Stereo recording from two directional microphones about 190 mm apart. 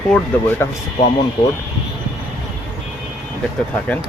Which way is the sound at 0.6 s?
10° left (ahead or behind).